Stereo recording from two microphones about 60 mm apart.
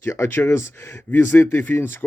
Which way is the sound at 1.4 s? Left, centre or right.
Left.